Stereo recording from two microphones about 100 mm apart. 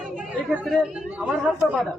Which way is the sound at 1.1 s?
10° right (ahead or behind).